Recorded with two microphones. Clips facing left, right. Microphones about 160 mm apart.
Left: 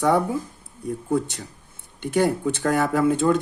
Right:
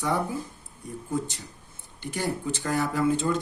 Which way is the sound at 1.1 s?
65° left (ahead or behind).